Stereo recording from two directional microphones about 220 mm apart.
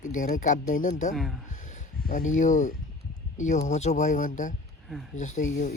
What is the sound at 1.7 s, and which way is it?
Speech, 35° left (ahead or behind).